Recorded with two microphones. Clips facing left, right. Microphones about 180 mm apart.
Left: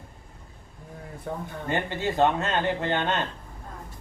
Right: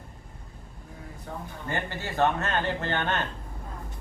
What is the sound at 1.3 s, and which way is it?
Speech, 55° left (ahead or behind).